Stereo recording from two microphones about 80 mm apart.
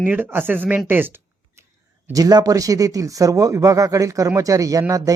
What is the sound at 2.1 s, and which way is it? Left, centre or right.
Speech, right.